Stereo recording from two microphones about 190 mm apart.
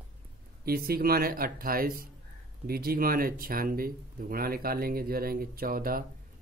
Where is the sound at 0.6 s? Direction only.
55° right (ahead or behind).